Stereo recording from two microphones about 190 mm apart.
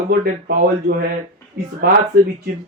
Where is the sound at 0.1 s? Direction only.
55° right (ahead or behind).